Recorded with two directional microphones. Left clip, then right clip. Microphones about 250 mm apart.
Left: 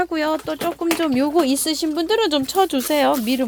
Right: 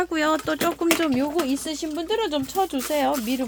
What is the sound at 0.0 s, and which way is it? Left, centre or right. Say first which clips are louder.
Speech: left 2 dB; centre.